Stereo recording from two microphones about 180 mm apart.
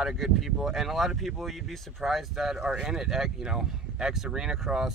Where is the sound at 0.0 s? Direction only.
Centre (ahead or behind).